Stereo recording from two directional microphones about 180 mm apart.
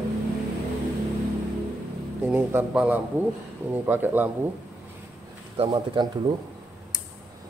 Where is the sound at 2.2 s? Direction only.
5° right (ahead or behind).